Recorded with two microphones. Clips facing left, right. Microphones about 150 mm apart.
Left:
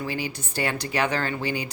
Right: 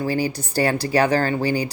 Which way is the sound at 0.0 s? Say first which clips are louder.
Right 8 dB; 40° right (ahead or behind).